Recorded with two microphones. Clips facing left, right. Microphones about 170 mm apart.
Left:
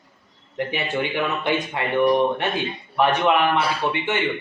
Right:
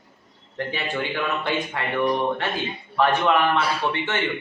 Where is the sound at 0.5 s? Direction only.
15° left (ahead or behind).